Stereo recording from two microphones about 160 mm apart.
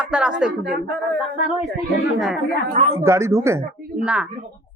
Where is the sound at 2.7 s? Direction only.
40° right (ahead or behind).